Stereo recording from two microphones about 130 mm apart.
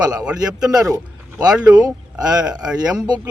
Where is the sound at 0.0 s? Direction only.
30° right (ahead or behind).